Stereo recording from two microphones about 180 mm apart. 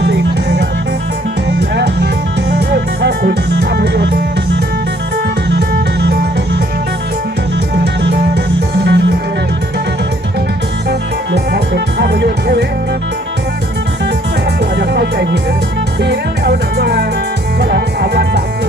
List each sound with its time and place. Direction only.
0.0 s music: 70° right (ahead or behind)
1.7 s music: 70° right (ahead or behind)
5.5 s music: 70° right (ahead or behind)
8.8 s music: 70° right (ahead or behind)
10.8 s music: 70° right (ahead or behind)
14.8 s music: 70° right (ahead or behind)